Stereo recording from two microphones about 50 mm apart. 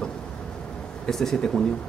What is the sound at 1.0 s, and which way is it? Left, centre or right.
Speech, centre.